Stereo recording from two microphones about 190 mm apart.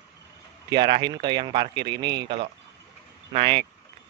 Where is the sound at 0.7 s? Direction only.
25° right (ahead or behind).